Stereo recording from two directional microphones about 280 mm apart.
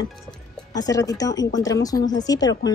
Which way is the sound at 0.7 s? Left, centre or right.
Centre.